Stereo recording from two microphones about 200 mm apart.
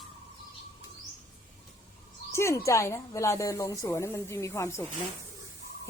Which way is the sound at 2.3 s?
15° left (ahead or behind).